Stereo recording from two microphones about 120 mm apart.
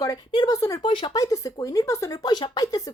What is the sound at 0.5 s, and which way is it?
Speech, 25° left (ahead or behind).